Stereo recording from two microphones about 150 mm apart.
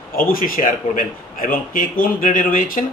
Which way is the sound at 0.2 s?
70° left (ahead or behind).